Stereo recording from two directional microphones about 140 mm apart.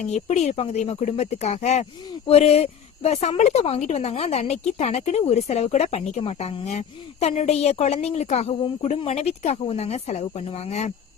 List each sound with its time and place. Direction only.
0.0 s speech: 55° left (ahead or behind)